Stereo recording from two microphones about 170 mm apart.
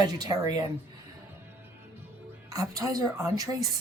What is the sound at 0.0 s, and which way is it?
Speech, 25° right (ahead or behind).